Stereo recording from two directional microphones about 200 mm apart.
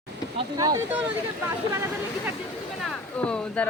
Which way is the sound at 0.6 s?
20° right (ahead or behind).